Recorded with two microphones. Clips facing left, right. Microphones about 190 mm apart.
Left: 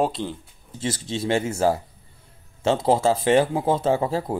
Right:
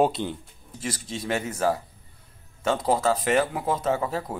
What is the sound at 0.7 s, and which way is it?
Speech, 25° left (ahead or behind).